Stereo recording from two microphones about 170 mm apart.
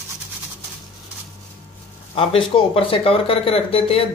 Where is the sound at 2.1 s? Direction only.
35° left (ahead or behind).